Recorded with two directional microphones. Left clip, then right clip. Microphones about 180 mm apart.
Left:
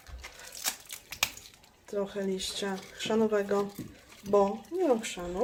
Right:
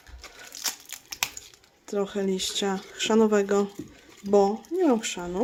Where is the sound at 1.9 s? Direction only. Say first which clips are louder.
Right 5 dB; 65° right (ahead or behind).